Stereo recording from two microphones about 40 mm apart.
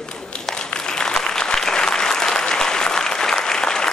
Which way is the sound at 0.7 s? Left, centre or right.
Centre.